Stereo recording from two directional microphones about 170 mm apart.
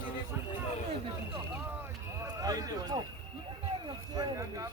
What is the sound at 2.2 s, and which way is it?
Run, 20° right (ahead or behind).